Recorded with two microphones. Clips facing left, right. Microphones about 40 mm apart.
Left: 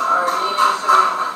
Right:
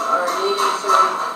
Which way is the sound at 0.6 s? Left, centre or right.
Left.